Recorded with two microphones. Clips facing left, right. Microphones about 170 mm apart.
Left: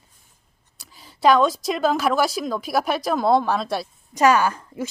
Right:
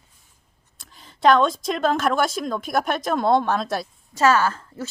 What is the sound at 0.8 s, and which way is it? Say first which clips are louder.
A woman's voice: even; 5° left (ahead or behind).